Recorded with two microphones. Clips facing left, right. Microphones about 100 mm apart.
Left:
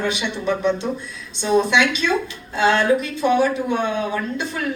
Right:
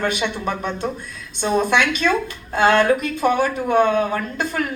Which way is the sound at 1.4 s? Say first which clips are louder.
Left 1 dB; 50° right (ahead or behind).